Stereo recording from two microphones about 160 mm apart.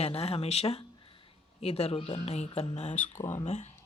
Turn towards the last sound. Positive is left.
turn(degrees=45)  # may be behind; listen again after turning